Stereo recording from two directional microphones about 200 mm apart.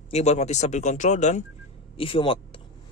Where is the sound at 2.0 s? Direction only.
25° left (ahead or behind).